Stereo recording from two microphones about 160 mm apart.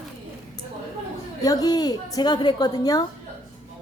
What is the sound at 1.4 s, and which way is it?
A woman's voice, 25° left (ahead or behind).